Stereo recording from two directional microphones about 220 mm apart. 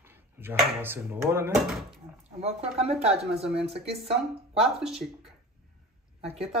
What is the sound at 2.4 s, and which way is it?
Speech, 30° right (ahead or behind).